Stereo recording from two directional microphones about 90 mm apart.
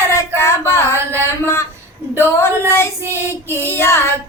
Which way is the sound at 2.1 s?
30° left (ahead or behind).